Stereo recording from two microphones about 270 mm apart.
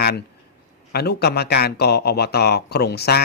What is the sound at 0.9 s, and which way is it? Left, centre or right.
A man's voice, left.